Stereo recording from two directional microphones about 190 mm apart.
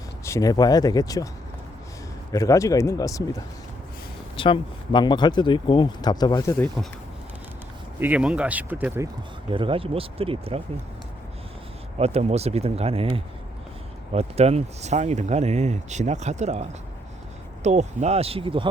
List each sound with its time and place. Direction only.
0.3 s speech: 15° left (ahead or behind)
2.3 s speech: 15° left (ahead or behind)
7.9 s speech: 10° right (ahead or behind)
9.5 s speech: 30° right (ahead or behind)
11.9 s speech: 35° right (ahead or behind)